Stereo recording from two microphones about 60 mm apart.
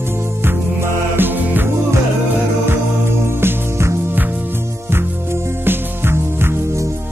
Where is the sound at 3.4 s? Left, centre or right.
Right.